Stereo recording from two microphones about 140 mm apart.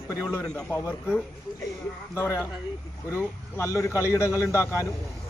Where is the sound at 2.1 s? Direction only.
15° left (ahead or behind).